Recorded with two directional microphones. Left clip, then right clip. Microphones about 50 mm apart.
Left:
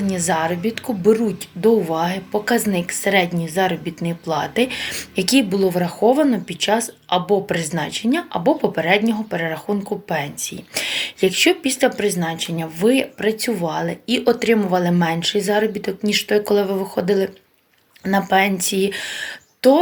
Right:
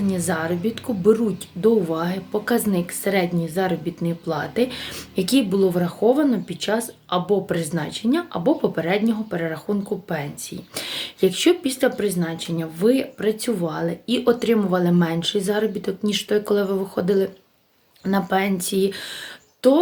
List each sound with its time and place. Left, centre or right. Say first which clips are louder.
0.1 s a woman's voice: left 6 dB; right
6.7 s a woman's voice: left 4 dB; right
13.3 s a woman's voice: left 3 dB; right
14.2 s a woman's voice: left 2 dB; right